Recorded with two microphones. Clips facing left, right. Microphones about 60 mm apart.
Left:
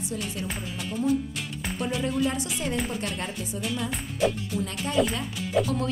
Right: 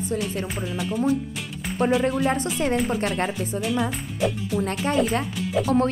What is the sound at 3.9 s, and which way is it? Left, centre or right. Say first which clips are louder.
Speech: right 1 dB; centre.